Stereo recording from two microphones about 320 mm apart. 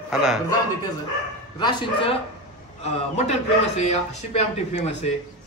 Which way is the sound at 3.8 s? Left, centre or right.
Centre.